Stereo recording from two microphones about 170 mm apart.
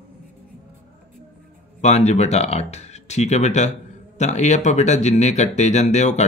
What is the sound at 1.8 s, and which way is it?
Speech, 40° left (ahead or behind).